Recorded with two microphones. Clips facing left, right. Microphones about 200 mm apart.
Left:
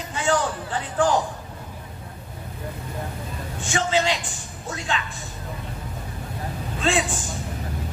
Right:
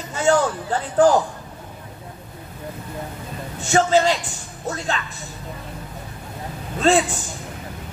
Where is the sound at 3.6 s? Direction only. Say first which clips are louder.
Right 6 dB; 40° right (ahead or behind).